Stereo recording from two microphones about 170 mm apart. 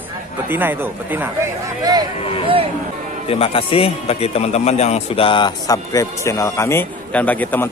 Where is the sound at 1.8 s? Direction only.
20° right (ahead or behind).